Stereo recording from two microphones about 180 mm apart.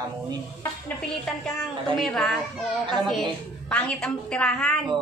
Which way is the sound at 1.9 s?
Centre (ahead or behind).